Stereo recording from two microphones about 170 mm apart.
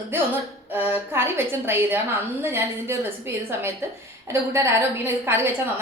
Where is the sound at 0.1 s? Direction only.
15° right (ahead or behind).